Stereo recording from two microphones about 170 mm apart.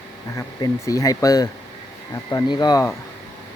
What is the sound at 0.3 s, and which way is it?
Speech, 20° left (ahead or behind).